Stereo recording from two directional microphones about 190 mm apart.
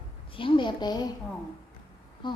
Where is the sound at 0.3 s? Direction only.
25° left (ahead or behind).